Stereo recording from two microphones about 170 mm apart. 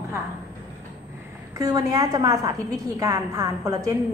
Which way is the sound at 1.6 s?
20° right (ahead or behind).